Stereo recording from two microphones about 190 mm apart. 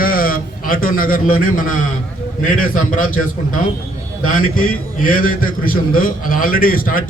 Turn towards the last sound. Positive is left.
turn(degrees=50)  # may be behind; listen again after turning